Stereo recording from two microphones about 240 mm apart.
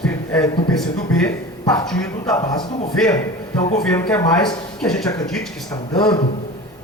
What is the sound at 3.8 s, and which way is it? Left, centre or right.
Speech, centre.